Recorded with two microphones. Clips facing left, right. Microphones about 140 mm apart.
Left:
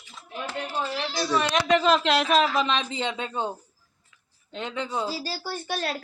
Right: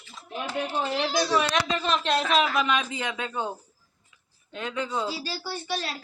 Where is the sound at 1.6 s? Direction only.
80° left.